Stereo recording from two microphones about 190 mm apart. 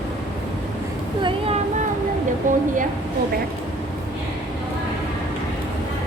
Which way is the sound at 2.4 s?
40° right (ahead or behind).